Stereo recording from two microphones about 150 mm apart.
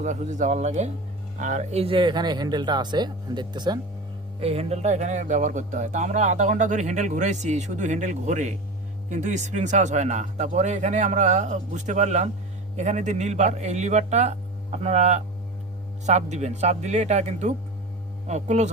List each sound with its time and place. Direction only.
0.0 s speech: 55° right (ahead or behind); by 3.8 s 30° right (ahead or behind)
4.4 s speech: 40° right (ahead or behind)